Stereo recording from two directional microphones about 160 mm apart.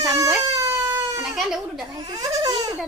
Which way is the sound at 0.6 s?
15° right (ahead or behind).